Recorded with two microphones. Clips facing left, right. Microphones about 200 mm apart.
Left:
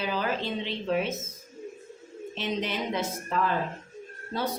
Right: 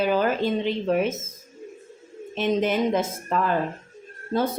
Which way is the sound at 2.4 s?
50° right (ahead or behind).